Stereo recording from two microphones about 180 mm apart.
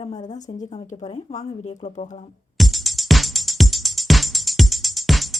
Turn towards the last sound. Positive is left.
turn(degrees=0)  # may be behind; listen again after turning